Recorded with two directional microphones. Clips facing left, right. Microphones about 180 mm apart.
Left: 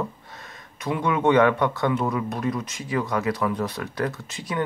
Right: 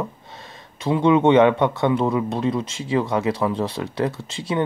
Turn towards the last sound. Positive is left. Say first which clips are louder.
# right 5 dB
turn(degrees=-30)  # may be behind; listen again after turning